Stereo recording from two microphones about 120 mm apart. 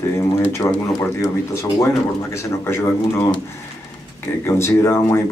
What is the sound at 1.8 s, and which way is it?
Speech, 25° left (ahead or behind).